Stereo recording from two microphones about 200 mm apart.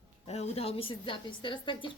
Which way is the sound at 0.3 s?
30° left (ahead or behind).